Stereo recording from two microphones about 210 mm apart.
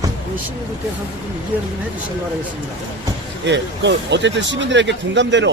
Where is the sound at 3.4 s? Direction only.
55° right (ahead or behind).